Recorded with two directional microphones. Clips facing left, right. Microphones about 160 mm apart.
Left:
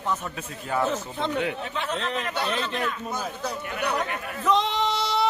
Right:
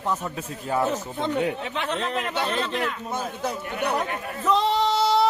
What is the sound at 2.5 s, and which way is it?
Speech, 30° right (ahead or behind).